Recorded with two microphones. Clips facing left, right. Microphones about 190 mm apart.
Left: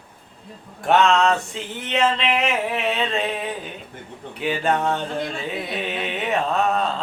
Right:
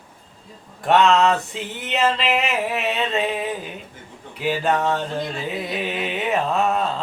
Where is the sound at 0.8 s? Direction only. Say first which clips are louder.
Right 1 dB; centre (ahead or behind).